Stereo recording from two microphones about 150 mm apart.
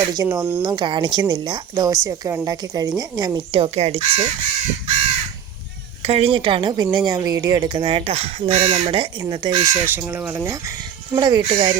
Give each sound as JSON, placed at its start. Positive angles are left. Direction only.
{"t": 0.1, "sound": "a woman's voice", "side_deg": -25}
{"t": 6.0, "sound": "a woman's voice", "side_deg": -40}
{"t": 9.8, "sound": "a woman's voice", "side_deg": -15}